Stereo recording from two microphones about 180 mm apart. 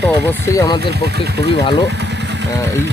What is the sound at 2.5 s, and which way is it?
Speech, 20° left (ahead or behind).